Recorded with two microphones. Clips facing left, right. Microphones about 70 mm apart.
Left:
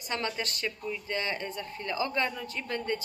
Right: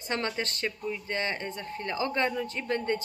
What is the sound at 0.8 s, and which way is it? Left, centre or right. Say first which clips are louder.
Speech: right 2 dB; centre.